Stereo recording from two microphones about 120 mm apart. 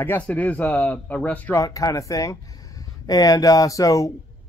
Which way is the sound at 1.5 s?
30° left (ahead or behind).